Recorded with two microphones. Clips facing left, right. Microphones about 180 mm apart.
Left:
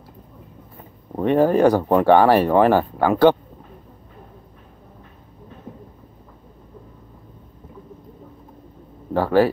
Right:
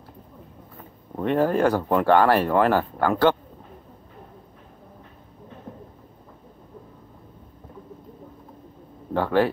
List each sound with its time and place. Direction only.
1.2 s speech: 15° left (ahead or behind)
9.1 s speech: 10° left (ahead or behind)